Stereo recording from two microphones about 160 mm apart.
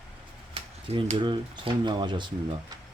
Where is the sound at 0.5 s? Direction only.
40° right (ahead or behind).